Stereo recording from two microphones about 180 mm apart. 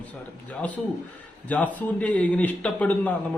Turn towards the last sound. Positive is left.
turn(degrees=10)  # may be behind; listen again after turning